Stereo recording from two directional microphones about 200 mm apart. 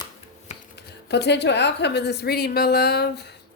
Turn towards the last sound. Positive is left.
turn(degrees=55)  # may be behind; listen again after turning